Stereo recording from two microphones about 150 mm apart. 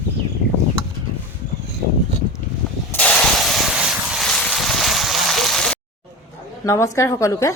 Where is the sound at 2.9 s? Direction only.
10° left (ahead or behind).